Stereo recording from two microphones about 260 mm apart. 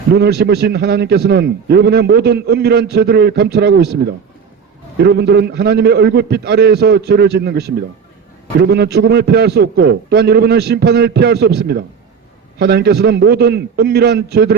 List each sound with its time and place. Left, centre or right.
0.1 s a man's voice: right